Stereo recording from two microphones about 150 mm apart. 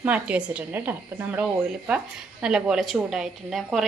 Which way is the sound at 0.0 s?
10° right (ahead or behind).